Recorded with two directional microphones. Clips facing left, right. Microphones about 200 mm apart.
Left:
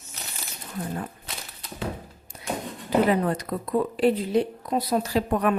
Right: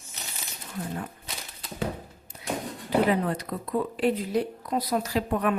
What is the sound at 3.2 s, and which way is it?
Speech, 40° left (ahead or behind).